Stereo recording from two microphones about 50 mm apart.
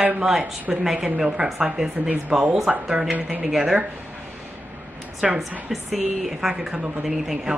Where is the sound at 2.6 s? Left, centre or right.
Centre.